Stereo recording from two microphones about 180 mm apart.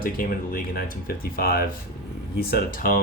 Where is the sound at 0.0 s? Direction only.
50° left (ahead or behind).